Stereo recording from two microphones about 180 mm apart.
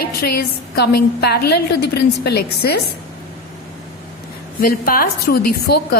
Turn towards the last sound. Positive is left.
turn(degrees=60)  # may be behind; listen again after turning